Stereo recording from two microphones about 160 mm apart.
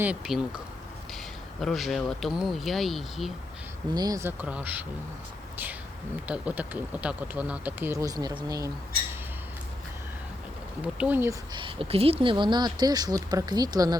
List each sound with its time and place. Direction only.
0.0 s speech: 5° right (ahead or behind)
1.6 s speech: centre (ahead or behind)
3.9 s speech: 25° right (ahead or behind)
6.2 s speech: 10° right (ahead or behind)
10.9 s speech: 10° right (ahead or behind)
11.5 s speech: 35° right (ahead or behind)